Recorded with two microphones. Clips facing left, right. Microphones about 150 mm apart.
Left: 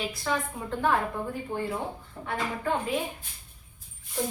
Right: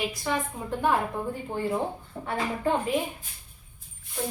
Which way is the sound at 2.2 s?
40° right (ahead or behind).